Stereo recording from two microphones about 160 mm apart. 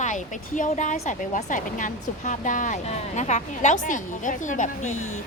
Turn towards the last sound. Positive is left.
turn(degrees=50)  # may be behind; listen again after turning